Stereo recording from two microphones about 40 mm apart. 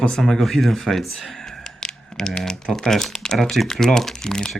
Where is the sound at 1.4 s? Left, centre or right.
Centre.